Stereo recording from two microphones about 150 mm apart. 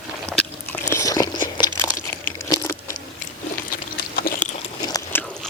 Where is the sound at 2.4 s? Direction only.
20° left (ahead or behind).